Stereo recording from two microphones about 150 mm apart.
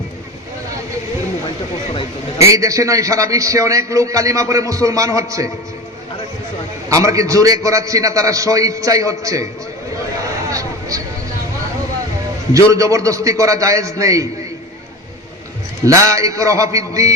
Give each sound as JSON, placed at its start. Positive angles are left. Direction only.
{"t": 1.9, "sound": "speech", "side_deg": 40}
{"t": 2.5, "sound": "a man's voice", "side_deg": -20}
{"t": 6.9, "sound": "a man's voice", "side_deg": -20}
{"t": 10.5, "sound": "a sound", "side_deg": -20}
{"t": 12.5, "sound": "a man's voice", "side_deg": -20}
{"t": 15.8, "sound": "a man's voice", "side_deg": -20}